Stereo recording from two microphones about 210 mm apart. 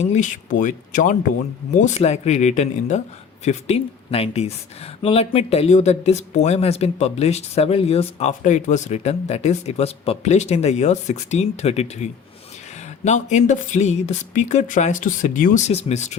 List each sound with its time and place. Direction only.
0.0 s speech: 35° left (ahead or behind)